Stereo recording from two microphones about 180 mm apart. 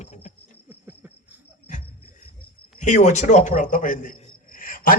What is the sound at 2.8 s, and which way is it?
A man's voice, 40° left (ahead or behind).